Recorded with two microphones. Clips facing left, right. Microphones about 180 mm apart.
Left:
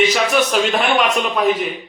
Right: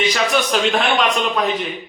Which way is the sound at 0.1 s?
5° left (ahead or behind).